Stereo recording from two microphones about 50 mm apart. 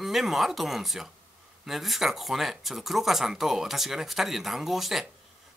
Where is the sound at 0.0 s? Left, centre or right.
Centre.